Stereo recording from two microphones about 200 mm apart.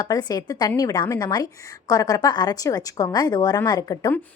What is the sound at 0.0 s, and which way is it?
A woman's voice, 20° left (ahead or behind).